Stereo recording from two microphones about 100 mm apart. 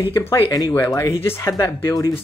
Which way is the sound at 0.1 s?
25° left (ahead or behind).